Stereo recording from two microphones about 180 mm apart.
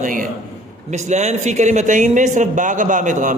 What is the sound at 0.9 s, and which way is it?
Speech, 40° right (ahead or behind).